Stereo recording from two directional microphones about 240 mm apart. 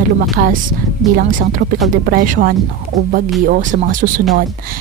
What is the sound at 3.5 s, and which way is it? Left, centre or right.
Speech, right.